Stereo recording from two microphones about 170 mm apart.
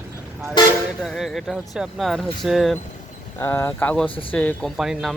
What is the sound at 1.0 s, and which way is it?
Speech, centre (ahead or behind).